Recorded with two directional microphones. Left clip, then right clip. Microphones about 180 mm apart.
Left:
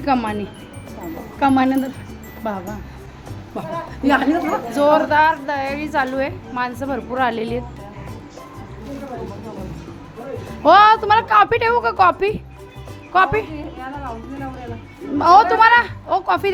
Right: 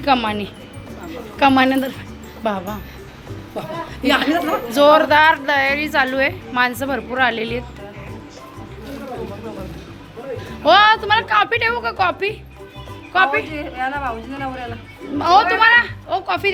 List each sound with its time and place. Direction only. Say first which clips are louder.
0.0 s a woman's voice: right 2 dB; 15° left (ahead or behind); by 2.7 s centre (ahead or behind)
4.1 s a woman's voice: even; 40° left (ahead or behind)
4.4 s a woman's voice: right 3 dB; 5° left (ahead or behind)
10.6 s a woman's voice: left 1 dB; 30° left (ahead or behind)
15.2 s a woman's voice: left 2 dB; 35° left (ahead or behind)